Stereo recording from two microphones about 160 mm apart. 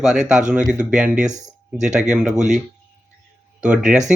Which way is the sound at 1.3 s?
45° right (ahead or behind).